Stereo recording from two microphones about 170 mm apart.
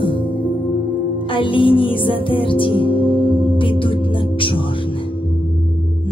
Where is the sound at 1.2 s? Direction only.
30° left (ahead or behind).